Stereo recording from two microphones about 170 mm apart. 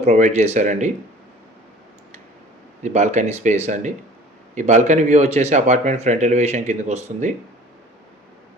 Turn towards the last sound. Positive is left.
turn(degrees=-40)  # may be behind; listen again after turning